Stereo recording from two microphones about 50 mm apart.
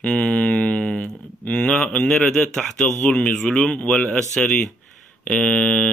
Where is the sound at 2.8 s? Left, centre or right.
Left.